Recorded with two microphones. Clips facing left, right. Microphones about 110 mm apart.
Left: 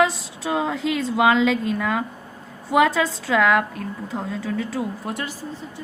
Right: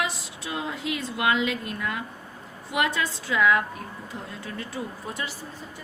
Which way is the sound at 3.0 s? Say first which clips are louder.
Left 4 dB; 90° left.